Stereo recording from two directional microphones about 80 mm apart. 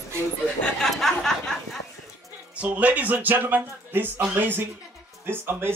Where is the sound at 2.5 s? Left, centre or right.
Centre.